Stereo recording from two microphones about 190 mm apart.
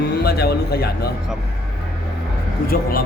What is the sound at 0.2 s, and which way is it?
Speech, 55° left (ahead or behind).